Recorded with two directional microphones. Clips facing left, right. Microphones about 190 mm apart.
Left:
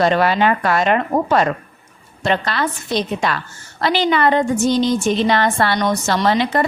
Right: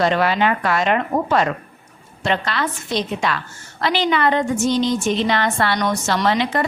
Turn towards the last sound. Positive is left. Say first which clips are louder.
# left 2 dB
turn(degrees=40)  # may be behind; listen again after turning